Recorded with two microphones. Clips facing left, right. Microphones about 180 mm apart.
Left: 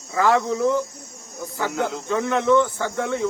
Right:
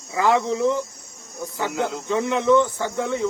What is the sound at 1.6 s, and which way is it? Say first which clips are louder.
Speech: even; 5° right (ahead or behind).